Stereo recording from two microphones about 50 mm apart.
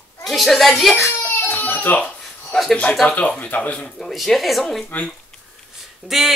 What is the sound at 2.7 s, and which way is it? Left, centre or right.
Speech, left.